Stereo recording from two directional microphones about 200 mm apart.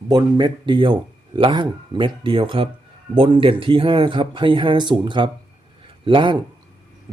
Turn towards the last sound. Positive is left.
turn(degrees=-25)  # may be behind; listen again after turning